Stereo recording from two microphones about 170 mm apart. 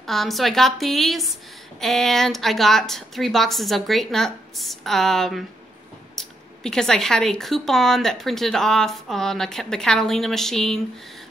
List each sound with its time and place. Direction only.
0.0 s speech: centre (ahead or behind)